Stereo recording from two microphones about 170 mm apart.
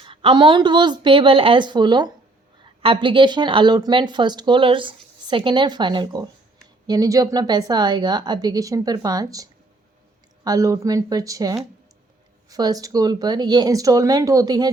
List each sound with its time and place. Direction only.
0.0 s speech: 30° right (ahead or behind)